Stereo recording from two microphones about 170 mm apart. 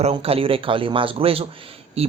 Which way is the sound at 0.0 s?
35° right (ahead or behind).